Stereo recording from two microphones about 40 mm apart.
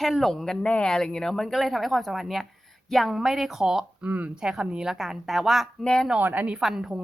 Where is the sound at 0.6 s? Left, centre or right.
Left.